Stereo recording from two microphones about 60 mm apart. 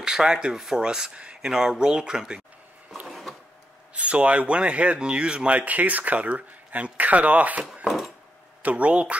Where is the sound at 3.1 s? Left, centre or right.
Centre.